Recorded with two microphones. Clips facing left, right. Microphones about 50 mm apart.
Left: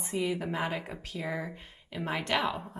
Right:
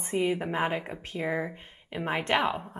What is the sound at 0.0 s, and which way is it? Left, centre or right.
A woman's voice, right.